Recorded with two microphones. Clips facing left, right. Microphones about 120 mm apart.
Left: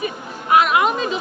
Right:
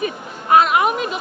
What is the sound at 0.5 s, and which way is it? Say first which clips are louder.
Speech: right 2 dB; 30° right (ahead or behind).